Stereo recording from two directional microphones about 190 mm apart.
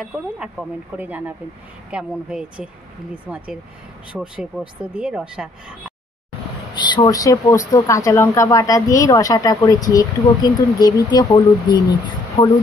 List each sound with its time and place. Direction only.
0.0 s speech: 5° right (ahead or behind)
6.8 s speech: 20° left (ahead or behind)